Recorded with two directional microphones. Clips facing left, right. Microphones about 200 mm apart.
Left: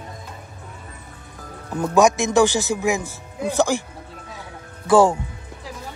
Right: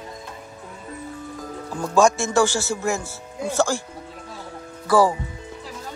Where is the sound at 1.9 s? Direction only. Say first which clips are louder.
Left 2 dB; 15° left (ahead or behind).